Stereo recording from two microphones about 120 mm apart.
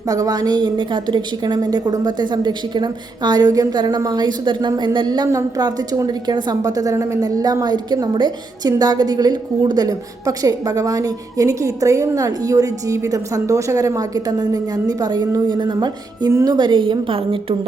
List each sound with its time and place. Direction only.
0.1 s a woman's voice: 30° right (ahead or behind); by 17.4 s 45° right (ahead or behind)